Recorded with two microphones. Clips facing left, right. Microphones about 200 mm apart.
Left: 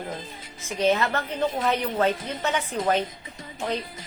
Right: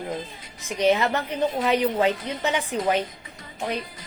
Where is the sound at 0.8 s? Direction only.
15° right (ahead or behind).